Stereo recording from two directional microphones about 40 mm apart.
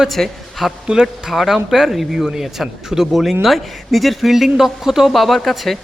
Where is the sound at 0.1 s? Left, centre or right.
Centre.